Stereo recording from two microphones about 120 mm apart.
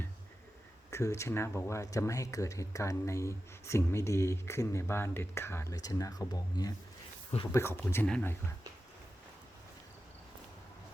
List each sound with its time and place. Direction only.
0.9 s speech: 25° left (ahead or behind)
7.5 s speech: 20° left (ahead or behind)